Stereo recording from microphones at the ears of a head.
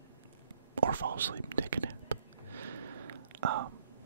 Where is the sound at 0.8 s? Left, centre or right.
Right.